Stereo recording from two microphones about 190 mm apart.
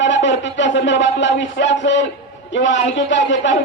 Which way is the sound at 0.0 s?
75° left (ahead or behind).